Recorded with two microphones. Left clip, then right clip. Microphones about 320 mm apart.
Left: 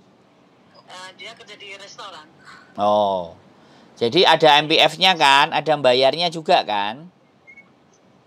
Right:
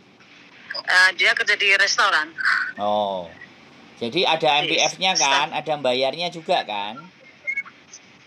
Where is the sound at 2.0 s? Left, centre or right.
Right.